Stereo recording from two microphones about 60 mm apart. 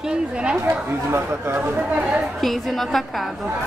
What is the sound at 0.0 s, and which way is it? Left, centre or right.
Speech, centre.